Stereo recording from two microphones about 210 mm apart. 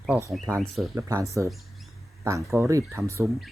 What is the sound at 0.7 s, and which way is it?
Speech, 5° right (ahead or behind).